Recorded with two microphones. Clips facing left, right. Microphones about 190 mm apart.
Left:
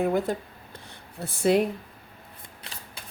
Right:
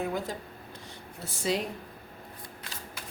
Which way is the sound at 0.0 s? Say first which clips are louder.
Left 7 dB; 55° left (ahead or behind).